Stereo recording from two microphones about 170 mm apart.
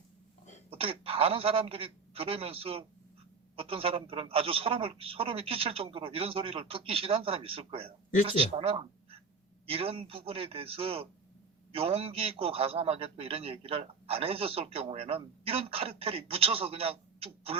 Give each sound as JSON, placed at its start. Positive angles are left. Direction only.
{"t": 0.7, "sound": "a man's voice", "side_deg": -35}